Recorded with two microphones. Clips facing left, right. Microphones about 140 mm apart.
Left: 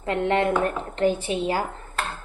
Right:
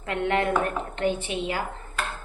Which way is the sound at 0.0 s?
30° left (ahead or behind).